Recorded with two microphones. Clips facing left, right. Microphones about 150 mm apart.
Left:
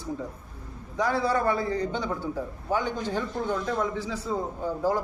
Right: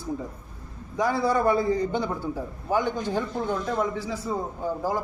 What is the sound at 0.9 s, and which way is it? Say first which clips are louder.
A man's voice: right 2 dB; 10° right (ahead or behind).